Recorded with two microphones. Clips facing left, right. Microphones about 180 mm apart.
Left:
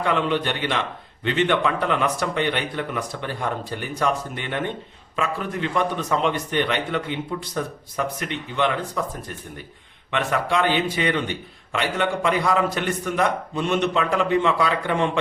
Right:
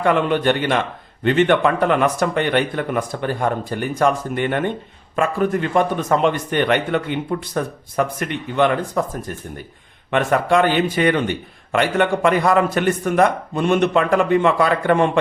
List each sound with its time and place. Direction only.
0.0 s a man's voice: 50° right (ahead or behind)
10.1 s a man's voice: 50° right (ahead or behind)